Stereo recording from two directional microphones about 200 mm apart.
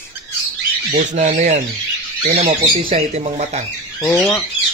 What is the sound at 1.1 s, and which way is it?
Speech, 35° right (ahead or behind).